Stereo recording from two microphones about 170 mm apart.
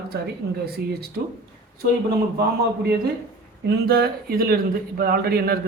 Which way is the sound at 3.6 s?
70° right (ahead or behind).